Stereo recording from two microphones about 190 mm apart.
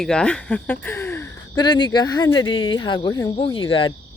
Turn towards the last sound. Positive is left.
turn(degrees=30)  # may be behind; listen again after turning